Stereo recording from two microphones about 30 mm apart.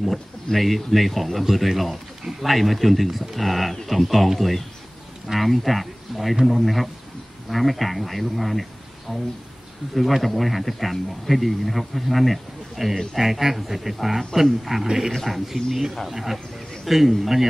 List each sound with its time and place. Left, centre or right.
0.0 s a man's voice: centre
9.1 s speech: centre
9.9 s a man's voice: centre